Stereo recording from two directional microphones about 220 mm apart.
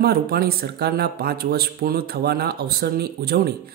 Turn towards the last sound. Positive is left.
turn(degrees=-45)  # may be behind; listen again after turning